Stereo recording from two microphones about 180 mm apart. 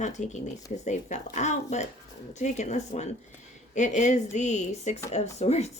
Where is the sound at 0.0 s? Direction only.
40° left (ahead or behind).